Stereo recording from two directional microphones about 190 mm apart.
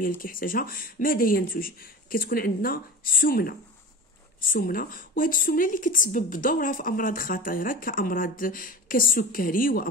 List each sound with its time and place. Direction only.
0.2 s a woman's voice: 45° left (ahead or behind)